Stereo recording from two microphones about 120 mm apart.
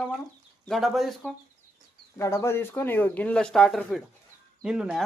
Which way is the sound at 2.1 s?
25° left (ahead or behind).